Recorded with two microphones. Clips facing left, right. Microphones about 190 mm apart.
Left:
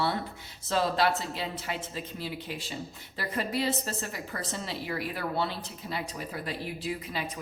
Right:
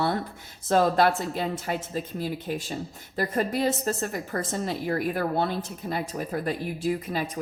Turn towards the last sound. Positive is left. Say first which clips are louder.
# right 7 dB
turn(degrees=-45)  # may be behind; listen again after turning